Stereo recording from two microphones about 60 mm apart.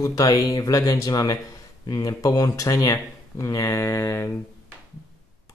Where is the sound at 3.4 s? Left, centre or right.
Left.